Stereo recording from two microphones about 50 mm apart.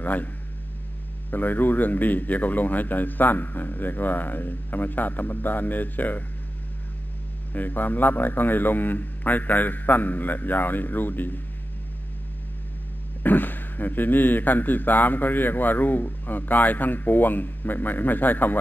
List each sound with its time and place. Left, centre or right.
0.0 s speech: left
1.3 s a man's voice: left
7.5 s a man's voice: left
13.2 s a man's voice: left